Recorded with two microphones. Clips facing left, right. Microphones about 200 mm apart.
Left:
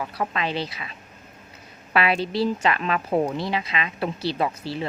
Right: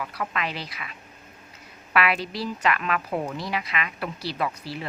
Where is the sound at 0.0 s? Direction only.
30° left (ahead or behind).